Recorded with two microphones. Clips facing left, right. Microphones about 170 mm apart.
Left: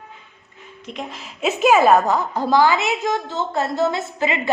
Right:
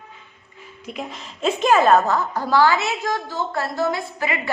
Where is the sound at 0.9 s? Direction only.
Centre (ahead or behind); by 4.4 s 20° left (ahead or behind).